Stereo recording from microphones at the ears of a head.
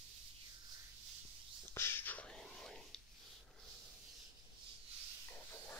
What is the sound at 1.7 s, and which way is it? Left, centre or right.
Whispering, left.